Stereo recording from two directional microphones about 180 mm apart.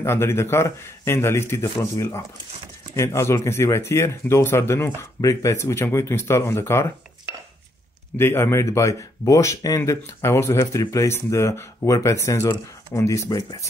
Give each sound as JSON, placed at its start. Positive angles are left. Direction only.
{"t": 0.0, "sound": "speech", "side_deg": 15}
{"t": 8.2, "sound": "speech", "side_deg": 15}